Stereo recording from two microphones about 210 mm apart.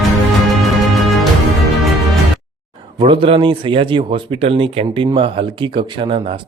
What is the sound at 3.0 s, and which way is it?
A man's voice, 25° right (ahead or behind).